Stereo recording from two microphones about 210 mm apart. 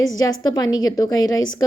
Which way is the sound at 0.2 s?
20° left (ahead or behind).